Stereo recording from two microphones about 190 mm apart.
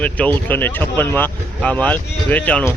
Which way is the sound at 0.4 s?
10° left (ahead or behind).